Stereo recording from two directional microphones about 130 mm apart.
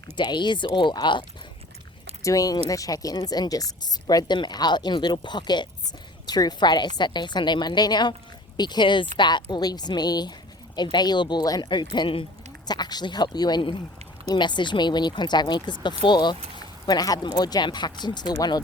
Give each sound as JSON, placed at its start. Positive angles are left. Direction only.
{"t": 0.2, "sound": "a woman's voice", "side_deg": 35}
{"t": 2.2, "sound": "a woman's voice", "side_deg": 25}
{"t": 12.6, "sound": "a woman's voice", "side_deg": 30}